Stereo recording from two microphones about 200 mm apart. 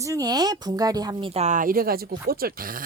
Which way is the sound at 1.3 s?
35° right (ahead or behind).